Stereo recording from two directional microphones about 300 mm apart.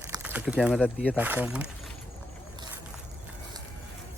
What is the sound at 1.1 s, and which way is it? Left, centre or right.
Speech, centre.